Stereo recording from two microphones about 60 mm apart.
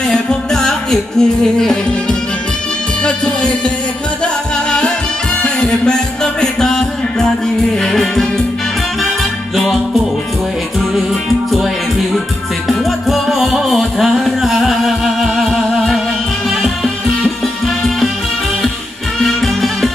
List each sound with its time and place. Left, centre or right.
0.1 s music: centre
4.6 s music: centre
9.6 s music: centre
12.6 s music: centre
19.2 s music: centre